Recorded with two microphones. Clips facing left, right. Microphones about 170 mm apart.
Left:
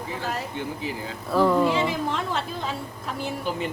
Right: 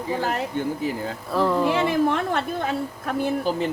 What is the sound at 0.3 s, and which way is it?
Speech, 55° right (ahead or behind).